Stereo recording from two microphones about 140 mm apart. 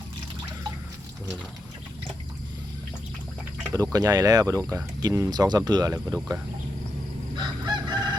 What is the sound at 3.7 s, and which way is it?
Speech, 25° right (ahead or behind).